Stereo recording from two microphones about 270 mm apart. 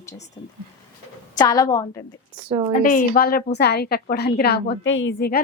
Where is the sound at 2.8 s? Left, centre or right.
Left.